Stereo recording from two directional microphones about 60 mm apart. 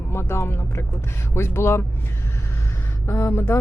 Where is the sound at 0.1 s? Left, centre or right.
Left.